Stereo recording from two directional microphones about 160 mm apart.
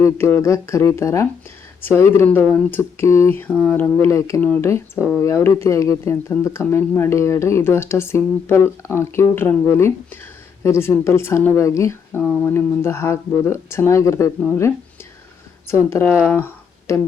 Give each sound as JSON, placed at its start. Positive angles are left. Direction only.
{"t": 0.0, "sound": "speech", "side_deg": 15}
{"t": 12.2, "sound": "speech", "side_deg": 5}
{"t": 16.3, "sound": "a sound", "side_deg": 15}